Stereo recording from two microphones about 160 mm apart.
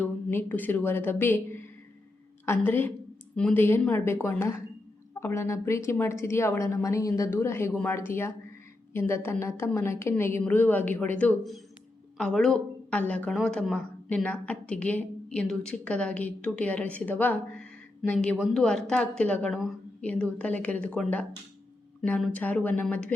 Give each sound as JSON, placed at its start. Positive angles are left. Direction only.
{"t": 0.0, "sound": "a woman's voice", "side_deg": 15}
{"t": 2.5, "sound": "a woman's voice", "side_deg": 15}